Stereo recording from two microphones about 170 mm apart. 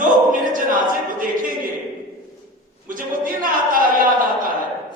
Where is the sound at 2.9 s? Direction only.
55° right (ahead or behind).